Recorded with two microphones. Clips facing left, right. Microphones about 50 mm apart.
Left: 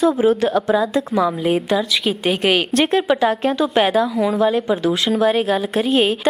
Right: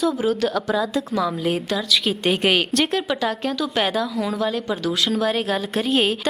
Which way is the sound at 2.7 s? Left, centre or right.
Left.